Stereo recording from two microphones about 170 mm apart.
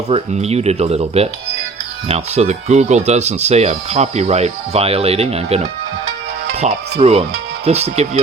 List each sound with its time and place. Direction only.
0.1 s speech: 40° right (ahead or behind)